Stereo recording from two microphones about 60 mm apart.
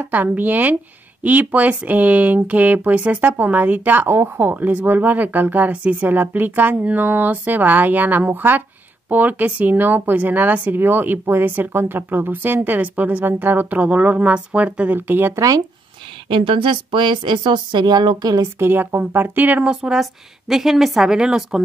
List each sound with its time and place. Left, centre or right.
0.0 s speech: right
4.1 s speech: right
15.0 s speech: right
15.3 s speech: right
18.2 s a woman's voice: right
18.6 s speech: right
19.7 s a woman's voice: centre